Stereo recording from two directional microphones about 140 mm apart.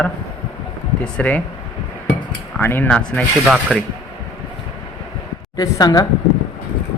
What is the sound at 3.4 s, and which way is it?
Speech, 5° right (ahead or behind).